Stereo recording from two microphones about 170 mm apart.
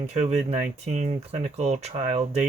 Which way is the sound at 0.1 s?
40° right (ahead or behind).